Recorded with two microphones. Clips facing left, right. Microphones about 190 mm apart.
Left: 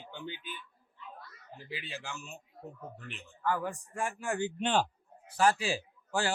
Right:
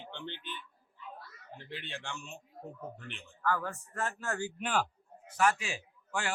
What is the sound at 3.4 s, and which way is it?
A man's voice, 15° left (ahead or behind).